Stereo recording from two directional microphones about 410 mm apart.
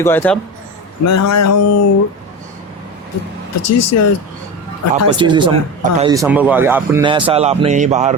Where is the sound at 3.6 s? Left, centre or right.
Left.